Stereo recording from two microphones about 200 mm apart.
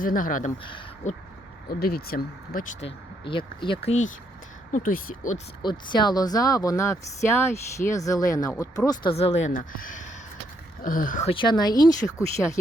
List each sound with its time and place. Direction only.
0.0 s speech: 45° left (ahead or behind)
0.6 s speech: 25° left (ahead or behind)
1.8 s speech: 50° left (ahead or behind)
2.8 s speech: 25° left (ahead or behind)
4.7 s speech: 45° left (ahead or behind)
5.6 s speech: 20° left (ahead or behind)
8.9 s speech: 25° left (ahead or behind); by 11.3 s 40° left (ahead or behind)
11.3 s speech: 25° left (ahead or behind)